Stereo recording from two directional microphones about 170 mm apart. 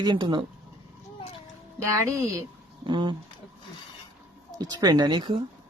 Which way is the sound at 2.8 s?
30° right (ahead or behind).